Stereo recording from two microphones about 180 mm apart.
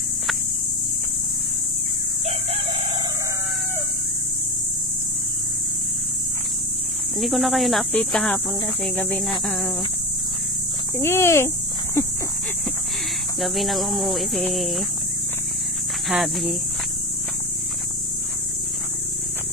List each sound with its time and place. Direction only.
2.2 s chicken: 30° right (ahead or behind)
7.2 s speech: centre (ahead or behind)
11.0 s speech: 15° left (ahead or behind)
13.4 s speech: centre (ahead or behind)
16.1 s speech: centre (ahead or behind)